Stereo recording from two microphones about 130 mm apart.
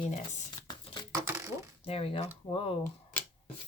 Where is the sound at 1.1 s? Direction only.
20° right (ahead or behind).